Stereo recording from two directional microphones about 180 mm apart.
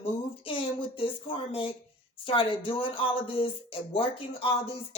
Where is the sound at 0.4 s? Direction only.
30° left (ahead or behind).